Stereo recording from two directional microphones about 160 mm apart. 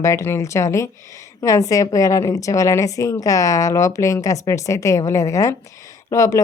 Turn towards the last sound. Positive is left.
turn(degrees=20)  # may be behind; listen again after turning